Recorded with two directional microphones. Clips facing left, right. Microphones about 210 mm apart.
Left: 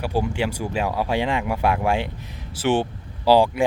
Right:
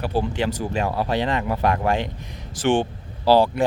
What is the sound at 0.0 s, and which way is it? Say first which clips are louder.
Speech: even; 10° left (ahead or behind).